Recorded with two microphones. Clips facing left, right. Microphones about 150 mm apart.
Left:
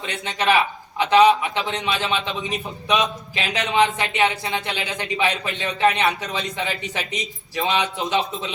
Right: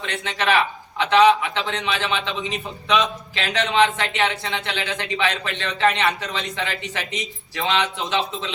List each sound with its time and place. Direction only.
0.0 s a man's voice: 15° left (ahead or behind)